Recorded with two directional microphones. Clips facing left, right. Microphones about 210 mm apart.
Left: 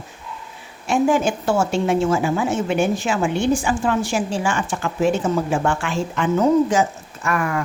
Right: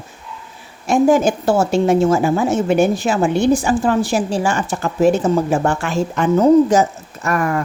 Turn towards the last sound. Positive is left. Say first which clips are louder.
# right 4 dB
turn(degrees=-40)  # may be behind; listen again after turning